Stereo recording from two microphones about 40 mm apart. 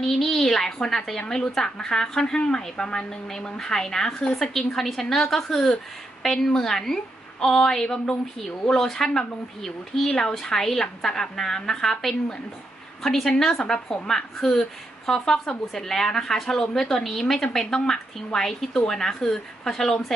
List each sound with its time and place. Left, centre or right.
0.0 s a woman's voice: centre
15.6 s a woman's voice: centre